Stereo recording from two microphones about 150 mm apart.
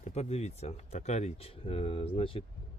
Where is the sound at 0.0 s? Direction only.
45° left (ahead or behind).